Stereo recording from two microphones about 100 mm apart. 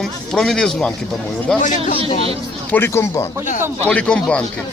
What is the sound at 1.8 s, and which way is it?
Speech, 70° right (ahead or behind).